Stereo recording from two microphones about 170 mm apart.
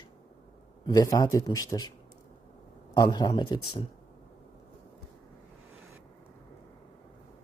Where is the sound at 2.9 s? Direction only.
25° left (ahead or behind).